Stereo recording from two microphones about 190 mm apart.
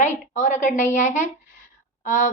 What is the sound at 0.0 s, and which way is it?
A woman's voice, 40° left (ahead or behind).